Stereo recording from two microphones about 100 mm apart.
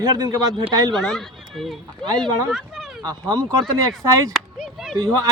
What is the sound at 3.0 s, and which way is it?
Speech, 45° right (ahead or behind).